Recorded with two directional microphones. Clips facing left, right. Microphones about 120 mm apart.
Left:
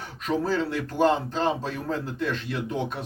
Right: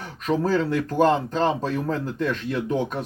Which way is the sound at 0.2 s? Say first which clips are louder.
Right 3 dB; 45° right (ahead or behind).